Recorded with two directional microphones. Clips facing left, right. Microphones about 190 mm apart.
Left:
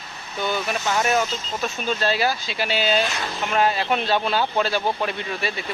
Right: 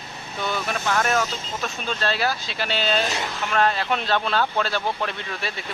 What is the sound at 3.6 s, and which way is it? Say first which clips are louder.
Speech: left 1 dB; 5° left (ahead or behind).